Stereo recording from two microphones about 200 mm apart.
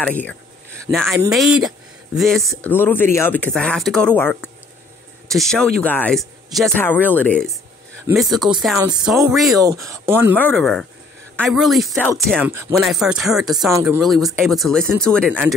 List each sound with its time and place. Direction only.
0.0 s a sound: 10° left (ahead or behind)
1.3 s speech: centre (ahead or behind)
8.7 s speech: 20° right (ahead or behind)
9.3 s speech: centre (ahead or behind)
9.6 s speech: 15° right (ahead or behind)
10.3 s speech: 5° left (ahead or behind)
12.4 s speech: 10° right (ahead or behind)
12.8 s speech: centre (ahead or behind)